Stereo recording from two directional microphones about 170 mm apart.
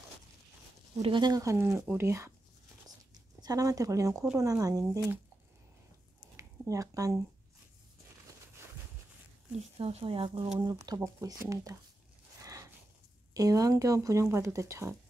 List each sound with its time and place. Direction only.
0.9 s speech: 30° right (ahead or behind); by 2.3 s 15° right (ahead or behind)
3.3 s speech: 20° right (ahead or behind)
6.3 s a sound: 20° right (ahead or behind)
9.6 s speech: 35° right (ahead or behind); by 11.7 s 20° right (ahead or behind)
12.4 s a sound: 20° right (ahead or behind)
13.3 s speech: 20° right (ahead or behind)